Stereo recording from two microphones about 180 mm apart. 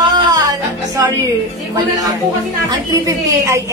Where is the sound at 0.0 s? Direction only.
25° right (ahead or behind).